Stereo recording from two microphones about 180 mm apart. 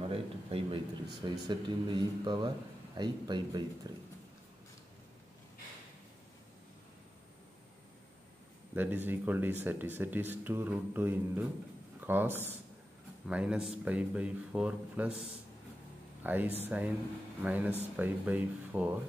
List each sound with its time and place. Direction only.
0.0 s a man's voice: 30° right (ahead or behind)
8.7 s speech: 10° right (ahead or behind)
16.2 s speech: 10° right (ahead or behind)